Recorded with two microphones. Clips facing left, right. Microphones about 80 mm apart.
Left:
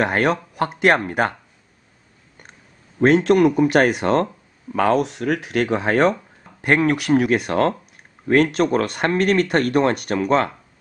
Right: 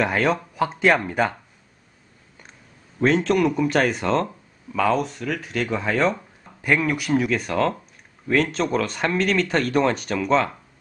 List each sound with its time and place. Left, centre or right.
0.0 s speech: left
3.3 s speech: left